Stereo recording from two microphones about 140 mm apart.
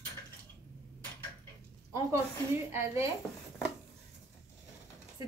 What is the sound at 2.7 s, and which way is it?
Speech, 20° right (ahead or behind).